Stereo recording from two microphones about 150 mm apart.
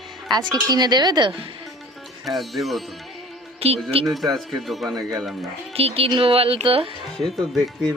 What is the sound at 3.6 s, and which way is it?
Speech, 40° right (ahead or behind).